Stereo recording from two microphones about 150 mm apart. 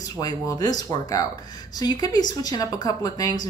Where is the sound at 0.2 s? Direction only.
25° left (ahead or behind).